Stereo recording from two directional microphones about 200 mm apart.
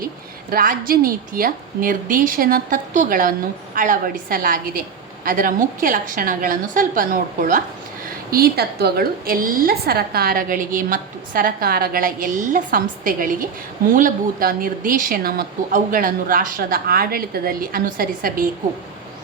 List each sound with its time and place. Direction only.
0.5 s a woman's voice: 45° right (ahead or behind)